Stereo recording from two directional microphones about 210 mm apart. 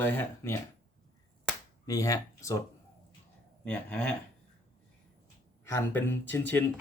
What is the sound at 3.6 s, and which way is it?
Speech, 5° left (ahead or behind).